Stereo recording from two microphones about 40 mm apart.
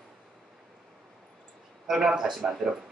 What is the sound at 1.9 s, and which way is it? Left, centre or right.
Speech, centre.